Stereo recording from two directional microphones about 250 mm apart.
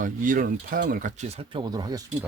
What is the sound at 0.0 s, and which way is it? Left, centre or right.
Speech, right.